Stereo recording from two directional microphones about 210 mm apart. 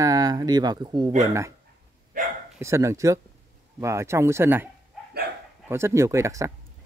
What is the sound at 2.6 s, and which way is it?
Speech, 15° right (ahead or behind).